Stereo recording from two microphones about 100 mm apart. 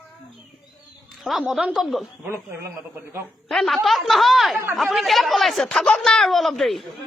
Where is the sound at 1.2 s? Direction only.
Centre (ahead or behind).